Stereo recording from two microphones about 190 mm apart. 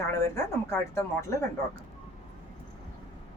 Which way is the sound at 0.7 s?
15° left (ahead or behind).